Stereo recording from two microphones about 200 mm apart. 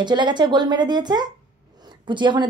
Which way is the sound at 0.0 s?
20° right (ahead or behind).